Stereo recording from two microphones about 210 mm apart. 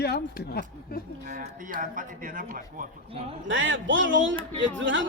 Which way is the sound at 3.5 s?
65° right (ahead or behind).